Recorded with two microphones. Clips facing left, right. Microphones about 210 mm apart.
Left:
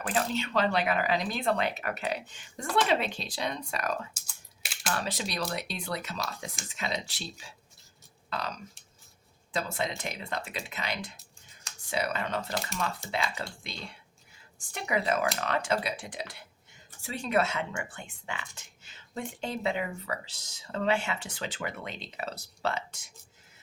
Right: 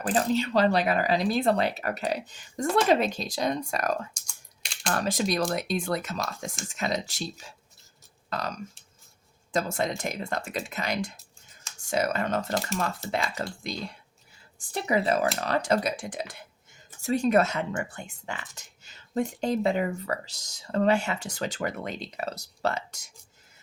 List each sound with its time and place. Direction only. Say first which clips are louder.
0.0 s speech: right 5 dB; 35° right (ahead or behind)
4.1 s typing: right 1 dB; 5° left (ahead or behind)
4.9 s speech: right 6 dB; 50° right (ahead or behind)